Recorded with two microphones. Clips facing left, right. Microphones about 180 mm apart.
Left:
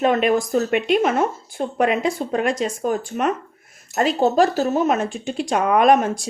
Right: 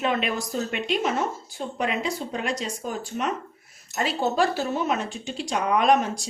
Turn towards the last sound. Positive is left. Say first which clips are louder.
# left 5 dB
turn(degrees=50)  # may be behind; listen again after turning